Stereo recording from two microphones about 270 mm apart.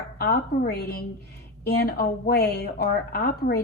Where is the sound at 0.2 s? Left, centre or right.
Left.